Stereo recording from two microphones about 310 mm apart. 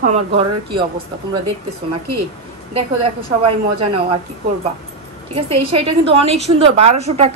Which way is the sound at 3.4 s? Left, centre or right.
Centre.